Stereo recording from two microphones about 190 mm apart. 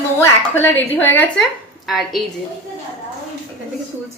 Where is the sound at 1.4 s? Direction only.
Centre (ahead or behind).